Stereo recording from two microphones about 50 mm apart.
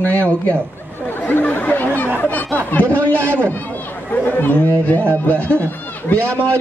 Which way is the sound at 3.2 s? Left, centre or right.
Right.